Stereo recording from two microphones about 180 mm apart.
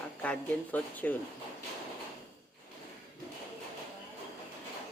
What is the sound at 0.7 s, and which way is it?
Speech, 10° left (ahead or behind).